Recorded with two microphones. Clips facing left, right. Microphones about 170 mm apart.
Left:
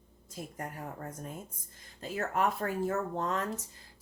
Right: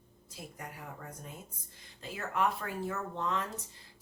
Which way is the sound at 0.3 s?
50° left (ahead or behind).